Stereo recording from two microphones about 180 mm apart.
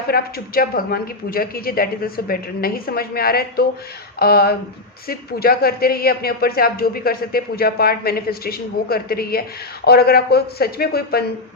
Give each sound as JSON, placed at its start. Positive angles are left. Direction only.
{"t": 0.1, "sound": "speech", "side_deg": 55}